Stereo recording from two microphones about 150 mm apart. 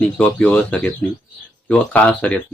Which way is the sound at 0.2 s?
10° left (ahead or behind).